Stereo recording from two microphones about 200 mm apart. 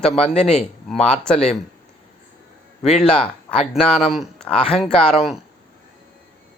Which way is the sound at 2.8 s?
35° left (ahead or behind).